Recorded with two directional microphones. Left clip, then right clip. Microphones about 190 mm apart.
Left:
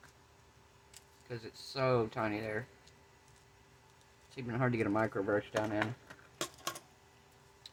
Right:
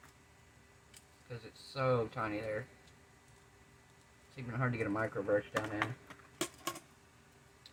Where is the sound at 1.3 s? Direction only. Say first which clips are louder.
Left 4 dB; 65° left (ahead or behind).